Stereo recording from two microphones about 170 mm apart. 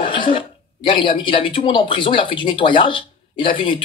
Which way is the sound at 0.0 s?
30° left (ahead or behind).